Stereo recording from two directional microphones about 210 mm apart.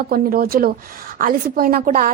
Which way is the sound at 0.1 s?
45° right (ahead or behind).